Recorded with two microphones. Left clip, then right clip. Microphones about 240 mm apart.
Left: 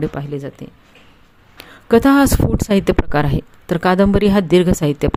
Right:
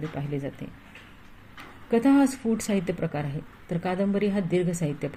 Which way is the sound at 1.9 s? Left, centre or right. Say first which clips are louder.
Left 10 dB; left.